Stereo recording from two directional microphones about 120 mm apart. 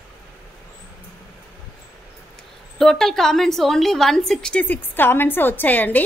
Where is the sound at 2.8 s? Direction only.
5° left (ahead or behind).